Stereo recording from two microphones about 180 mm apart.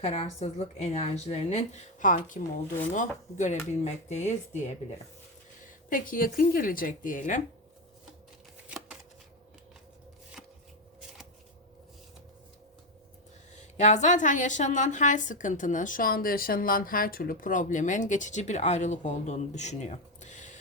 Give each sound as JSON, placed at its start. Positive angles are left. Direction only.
{"t": 0.0, "sound": "a woman's voice", "side_deg": 35}
{"t": 5.6, "sound": "a woman's voice", "side_deg": 50}
{"t": 10.4, "sound": "chopping", "side_deg": 0}
{"t": 13.6, "sound": "a woman's voice", "side_deg": 40}